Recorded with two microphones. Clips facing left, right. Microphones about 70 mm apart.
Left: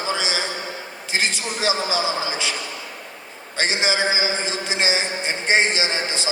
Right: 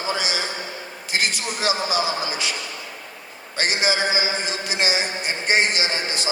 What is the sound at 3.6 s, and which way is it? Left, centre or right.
A man's voice, left.